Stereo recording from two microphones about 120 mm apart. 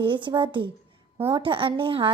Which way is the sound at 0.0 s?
45° right (ahead or behind).